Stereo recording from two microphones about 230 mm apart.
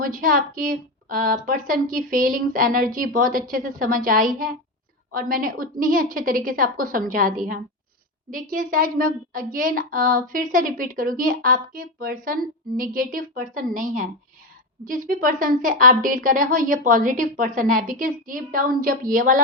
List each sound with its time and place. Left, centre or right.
0.0 s a woman's voice: right